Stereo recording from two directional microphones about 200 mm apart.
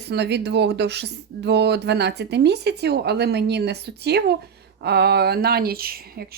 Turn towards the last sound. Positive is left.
turn(degrees=-50)  # may be behind; listen again after turning